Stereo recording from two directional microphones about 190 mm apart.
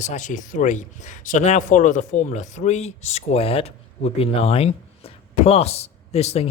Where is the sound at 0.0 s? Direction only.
40° left (ahead or behind).